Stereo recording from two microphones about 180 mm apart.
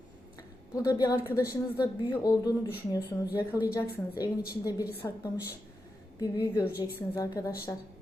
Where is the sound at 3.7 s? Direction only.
20° left (ahead or behind).